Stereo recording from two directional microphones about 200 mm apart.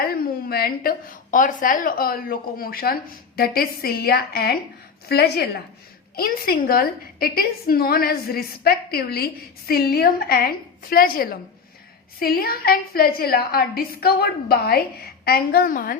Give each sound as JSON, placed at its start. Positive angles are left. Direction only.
{"t": 0.1, "sound": "a woman's voice", "side_deg": 50}